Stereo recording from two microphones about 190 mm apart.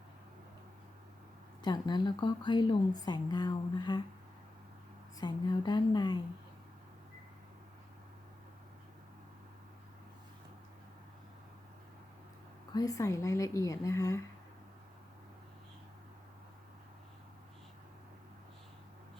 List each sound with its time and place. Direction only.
1.6 s speech: 20° left (ahead or behind)
5.2 s speech: 20° left (ahead or behind)
12.7 s a woman's voice: 15° left (ahead or behind)